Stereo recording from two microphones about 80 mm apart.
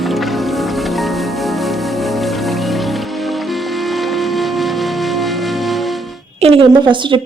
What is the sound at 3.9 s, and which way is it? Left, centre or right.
Music, centre.